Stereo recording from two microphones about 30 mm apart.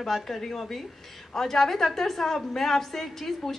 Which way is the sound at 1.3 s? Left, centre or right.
Centre.